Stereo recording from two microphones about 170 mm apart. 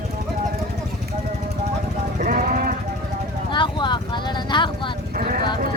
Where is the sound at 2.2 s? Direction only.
55° right (ahead or behind).